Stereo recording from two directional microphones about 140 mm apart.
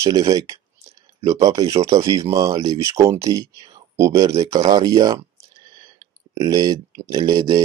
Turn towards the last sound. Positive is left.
turn(degrees=-30)  # may be behind; listen again after turning